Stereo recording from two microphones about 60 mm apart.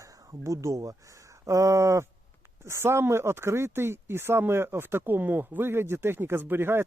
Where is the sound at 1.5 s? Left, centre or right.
Right.